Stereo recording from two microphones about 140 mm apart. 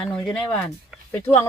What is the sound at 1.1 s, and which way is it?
Speech, 15° left (ahead or behind).